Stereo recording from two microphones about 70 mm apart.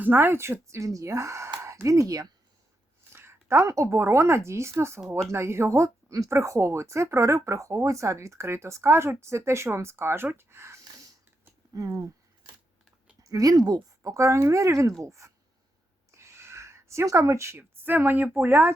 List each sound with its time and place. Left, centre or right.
0.0 s speech: right
3.1 s a sound: right
3.7 s speech: right
11.7 s speech: right
13.2 s speech: right
14.1 s speech: right
16.1 s a sound: right
17.6 s speech: right